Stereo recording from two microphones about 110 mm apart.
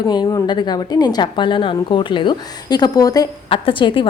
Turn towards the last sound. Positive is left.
turn(degrees=50)  # may be behind; listen again after turning